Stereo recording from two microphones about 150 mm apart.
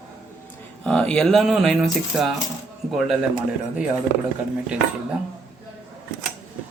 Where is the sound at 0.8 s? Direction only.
5° left (ahead or behind).